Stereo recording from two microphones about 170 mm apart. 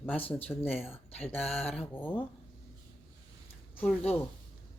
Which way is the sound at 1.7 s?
10° left (ahead or behind).